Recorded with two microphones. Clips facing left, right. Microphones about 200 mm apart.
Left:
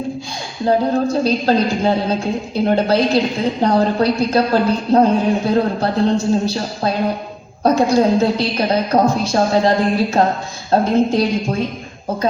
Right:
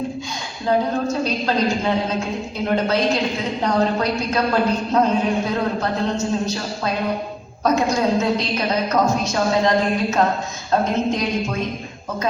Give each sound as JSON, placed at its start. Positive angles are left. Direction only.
{"t": 0.6, "sound": "a woman's voice", "side_deg": 35}